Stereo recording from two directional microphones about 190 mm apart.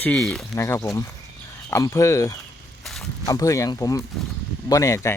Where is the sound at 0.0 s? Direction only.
5° left (ahead or behind).